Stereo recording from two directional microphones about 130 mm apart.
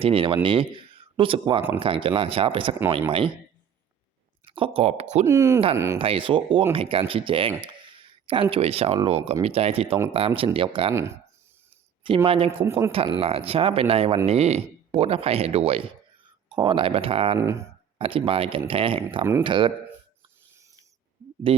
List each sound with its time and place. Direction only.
0.0 s speech: 45° right (ahead or behind)
4.4 s speech: 45° right (ahead or behind)
5.2 s speech: 20° right (ahead or behind)
6.0 s speech: 45° right (ahead or behind)
10.9 s speech: 20° right (ahead or behind)
12.0 s speech: 45° right (ahead or behind)
12.6 s speech: 20° right (ahead or behind)
13.1 s speech: 50° right (ahead or behind)
16.5 s speech: 40° right (ahead or behind)
17.3 s speech: 20° right (ahead or behind)
17.9 s speech: 45° right (ahead or behind)